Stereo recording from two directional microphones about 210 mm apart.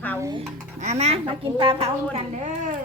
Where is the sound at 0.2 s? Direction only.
20° right (ahead or behind).